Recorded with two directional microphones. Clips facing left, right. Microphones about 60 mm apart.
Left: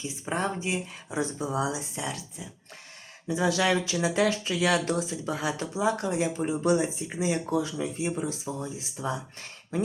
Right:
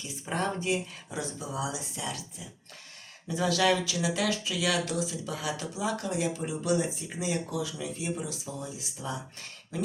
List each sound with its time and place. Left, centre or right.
0.0 s speech: centre; by 1.8 s left
3.2 s speech: centre
3.8 s speech: left